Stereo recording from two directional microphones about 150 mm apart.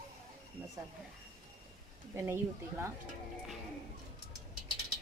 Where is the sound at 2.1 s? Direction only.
15° right (ahead or behind).